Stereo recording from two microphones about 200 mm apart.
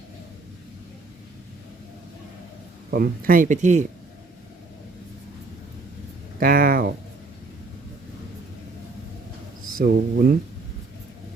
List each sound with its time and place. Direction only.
2.9 s speech: 45° right (ahead or behind)
6.4 s speech: 45° right (ahead or behind)
9.7 s speech: 50° right (ahead or behind)